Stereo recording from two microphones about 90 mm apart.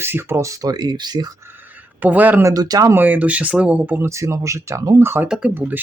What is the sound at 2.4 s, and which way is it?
Speech, 45° right (ahead or behind).